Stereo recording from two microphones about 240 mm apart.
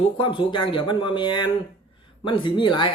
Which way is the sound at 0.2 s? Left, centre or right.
Left.